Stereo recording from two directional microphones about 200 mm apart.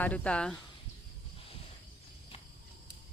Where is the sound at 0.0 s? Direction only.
5° left (ahead or behind).